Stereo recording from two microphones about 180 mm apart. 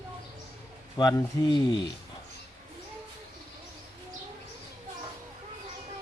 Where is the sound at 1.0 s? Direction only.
20° left (ahead or behind).